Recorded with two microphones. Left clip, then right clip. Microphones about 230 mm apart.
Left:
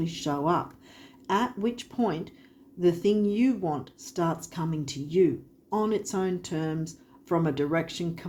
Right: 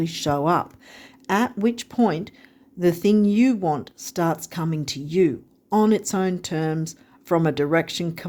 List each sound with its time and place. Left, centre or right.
0.0 s speech: right